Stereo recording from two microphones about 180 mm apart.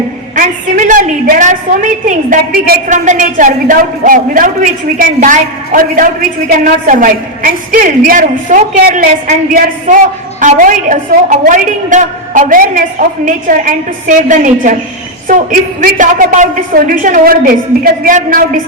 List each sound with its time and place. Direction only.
0.3 s a woman's voice: 45° right (ahead or behind)